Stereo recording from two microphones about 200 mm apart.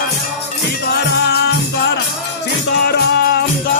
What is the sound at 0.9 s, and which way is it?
Music, 55° left (ahead or behind).